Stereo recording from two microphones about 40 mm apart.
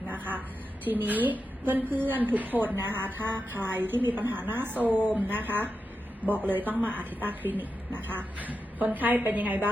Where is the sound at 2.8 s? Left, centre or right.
Right.